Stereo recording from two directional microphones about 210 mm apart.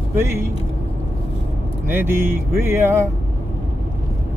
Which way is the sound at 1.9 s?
10° right (ahead or behind).